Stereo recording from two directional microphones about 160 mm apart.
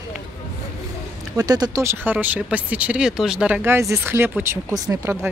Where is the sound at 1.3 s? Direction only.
25° right (ahead or behind).